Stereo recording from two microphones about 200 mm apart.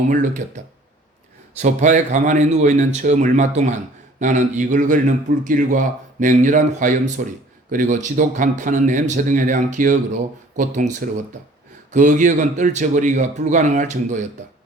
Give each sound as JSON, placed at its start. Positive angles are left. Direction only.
{"t": 0.1, "sound": "a man's voice", "side_deg": -40}
{"t": 1.6, "sound": "a man's voice", "side_deg": -40}